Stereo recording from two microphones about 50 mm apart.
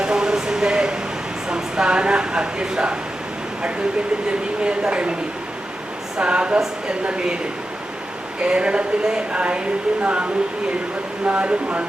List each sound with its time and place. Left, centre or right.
0.0 s a sound: centre
1.5 s speech: centre
4.6 s speech: centre
6.1 s speech: centre
8.4 s speech: right
11.3 s speech: right